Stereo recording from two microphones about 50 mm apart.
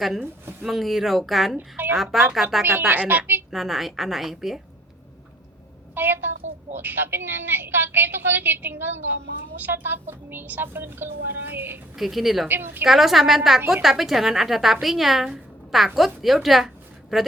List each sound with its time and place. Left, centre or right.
0.0 s a woman's voice: centre
1.5 s a woman's voice: right
2.0 s a woman's voice: centre
2.9 s a woman's voice: right
3.5 s a woman's voice: centre
5.9 s a woman's voice: right
11.9 s a woman's voice: centre
12.5 s a woman's voice: right
12.8 s a woman's voice: centre